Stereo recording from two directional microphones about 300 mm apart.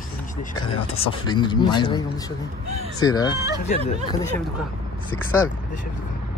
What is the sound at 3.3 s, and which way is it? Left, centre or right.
Speech, centre.